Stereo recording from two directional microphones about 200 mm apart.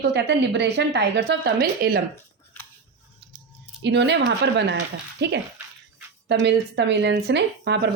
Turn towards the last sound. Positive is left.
turn(degrees=-60)  # may be behind; listen again after turning